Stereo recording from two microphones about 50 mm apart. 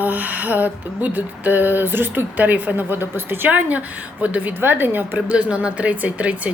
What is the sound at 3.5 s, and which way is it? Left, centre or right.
A woman's voice, right.